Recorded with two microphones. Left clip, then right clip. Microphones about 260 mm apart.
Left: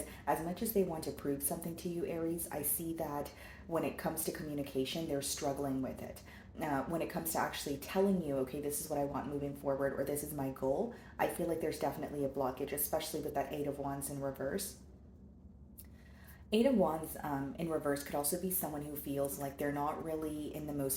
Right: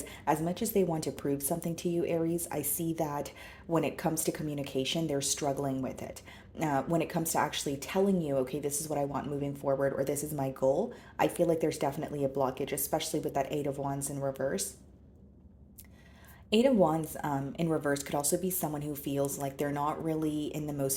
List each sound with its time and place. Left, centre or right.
0.3 s speech: right
16.5 s speech: right